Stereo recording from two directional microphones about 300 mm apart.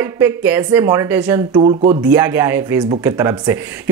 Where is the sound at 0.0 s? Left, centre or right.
Centre.